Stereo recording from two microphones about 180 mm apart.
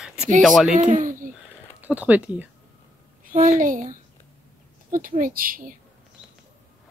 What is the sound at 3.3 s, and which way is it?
A woman's voice, 45° right (ahead or behind).